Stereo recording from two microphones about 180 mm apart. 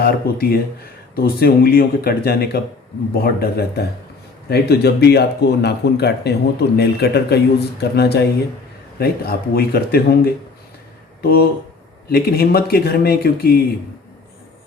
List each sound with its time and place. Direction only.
0.0 s speech: 60° left (ahead or behind)
11.2 s speech: 55° left (ahead or behind)